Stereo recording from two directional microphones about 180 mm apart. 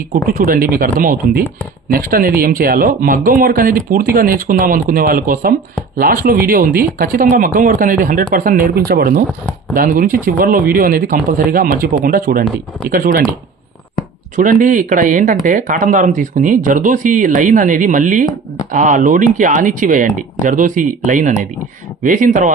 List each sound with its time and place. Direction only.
0.3 s speech: 55° right (ahead or behind)
14.3 s speech: 45° right (ahead or behind)